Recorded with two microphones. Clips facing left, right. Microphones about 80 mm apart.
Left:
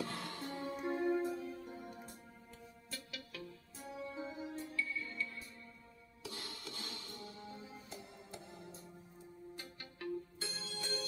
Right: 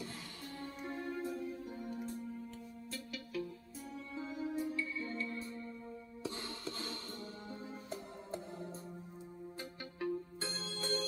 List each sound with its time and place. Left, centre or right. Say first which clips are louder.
0.0 s music: left 5 dB; left
0.5 s music: left 4 dB; centre
1.2 s music: even; centre
2.9 s music: right 6 dB; centre
4.0 s music: right 2 dB; left
4.6 s music: right 2 dB; right